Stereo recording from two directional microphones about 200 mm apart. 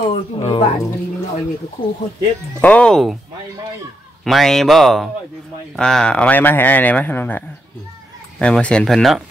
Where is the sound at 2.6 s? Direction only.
5° left (ahead or behind).